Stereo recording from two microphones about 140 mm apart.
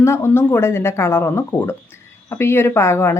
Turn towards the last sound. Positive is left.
turn(degrees=20)  # may be behind; listen again after turning